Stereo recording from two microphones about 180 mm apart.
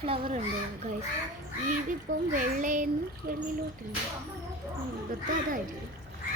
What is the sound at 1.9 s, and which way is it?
Speech, 45° right (ahead or behind).